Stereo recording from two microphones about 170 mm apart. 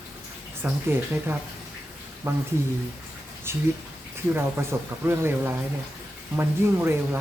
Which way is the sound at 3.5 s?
15° right (ahead or behind).